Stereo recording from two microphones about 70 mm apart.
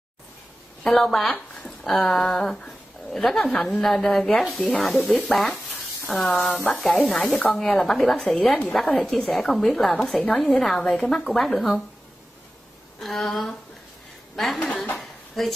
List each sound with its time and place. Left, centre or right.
0.8 s a woman's voice: centre
1.3 s speech: centre
2.0 s a woman's voice: centre
5.5 s sizzle: centre
6.2 s speech: centre
6.7 s a woman's voice: centre
13.0 s a woman's voice: centre
14.8 s a sound: centre